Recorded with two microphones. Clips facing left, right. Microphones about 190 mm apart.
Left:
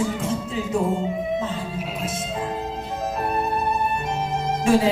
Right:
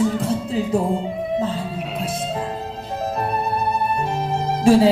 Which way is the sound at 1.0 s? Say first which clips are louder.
Right 2 dB; 35° right (ahead or behind).